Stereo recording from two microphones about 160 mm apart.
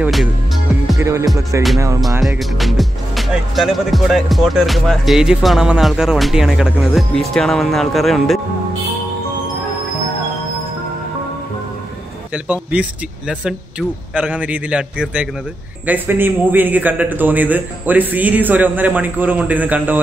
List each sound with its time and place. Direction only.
0.0 s speech: centre (ahead or behind)
0.9 s speech: 20° right (ahead or behind)
2.0 s speech: centre (ahead or behind)
13.3 s a man's voice: 5° right (ahead or behind)